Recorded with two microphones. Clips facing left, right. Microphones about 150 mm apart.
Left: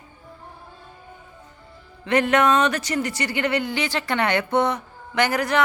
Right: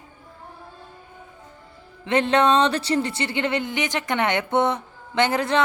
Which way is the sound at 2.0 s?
25° right (ahead or behind).